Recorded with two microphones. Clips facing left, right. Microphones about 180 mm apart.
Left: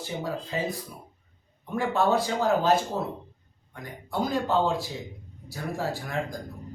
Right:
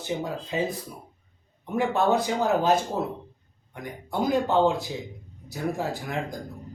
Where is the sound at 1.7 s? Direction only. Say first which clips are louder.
Right 1 dB; 20° right (ahead or behind).